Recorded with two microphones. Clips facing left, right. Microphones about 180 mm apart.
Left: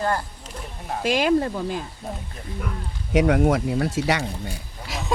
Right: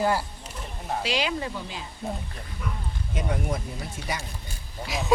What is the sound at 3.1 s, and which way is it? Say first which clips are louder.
Speech: left 12 dB; 75° left (ahead or behind).